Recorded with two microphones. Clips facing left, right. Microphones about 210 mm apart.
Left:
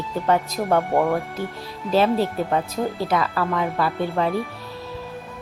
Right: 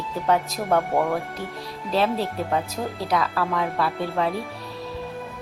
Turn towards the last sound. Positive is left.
turn(degrees=0)  # may be behind; listen again after turning